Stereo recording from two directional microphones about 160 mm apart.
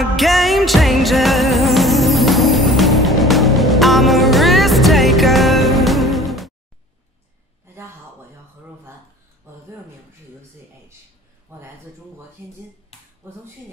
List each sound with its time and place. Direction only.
0.0 s music: centre (ahead or behind)
11.5 s speech: 15° right (ahead or behind)
13.2 s speech: 15° right (ahead or behind)